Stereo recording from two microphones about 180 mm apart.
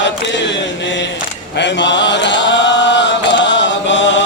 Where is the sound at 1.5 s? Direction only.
80° left.